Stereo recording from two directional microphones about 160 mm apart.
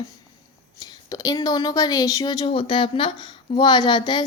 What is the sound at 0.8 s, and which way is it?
A woman's voice, 20° left (ahead or behind).